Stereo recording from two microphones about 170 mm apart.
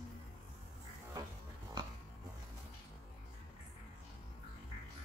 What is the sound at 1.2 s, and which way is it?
Music, 20° right (ahead or behind).